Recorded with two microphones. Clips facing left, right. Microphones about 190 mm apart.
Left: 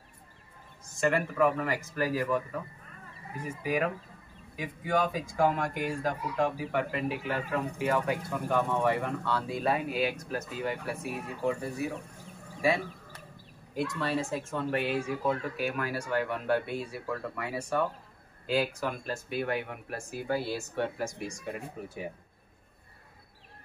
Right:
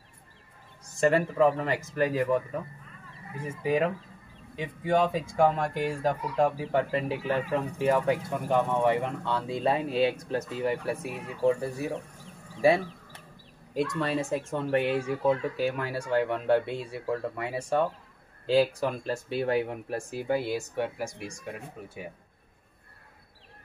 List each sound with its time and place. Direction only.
1.0 s speech: 30° right (ahead or behind)
3.6 s speech: 25° right (ahead or behind)
13.9 s speech: 20° right (ahead or behind); by 22.0 s 5° right (ahead or behind)